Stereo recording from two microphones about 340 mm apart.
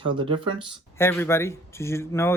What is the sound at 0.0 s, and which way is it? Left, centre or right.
Speech, centre.